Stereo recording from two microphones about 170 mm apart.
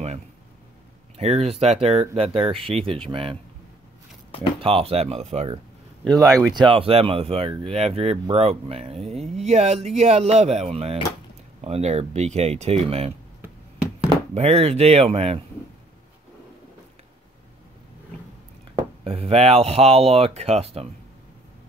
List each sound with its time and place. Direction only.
1.1 s speech: 40° right (ahead or behind)
4.6 s speech: 35° right (ahead or behind)
6.0 s speech: 20° right (ahead or behind)
14.3 s speech: 40° right (ahead or behind)
19.0 s speech: 35° right (ahead or behind)